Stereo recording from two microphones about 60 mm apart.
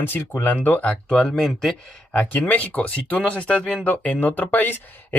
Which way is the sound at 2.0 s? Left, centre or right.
Left.